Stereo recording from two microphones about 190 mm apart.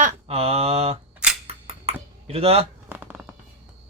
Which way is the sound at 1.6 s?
30° right (ahead or behind).